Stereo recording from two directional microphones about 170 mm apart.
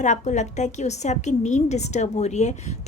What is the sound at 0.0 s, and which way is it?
A woman's voice, 45° left (ahead or behind).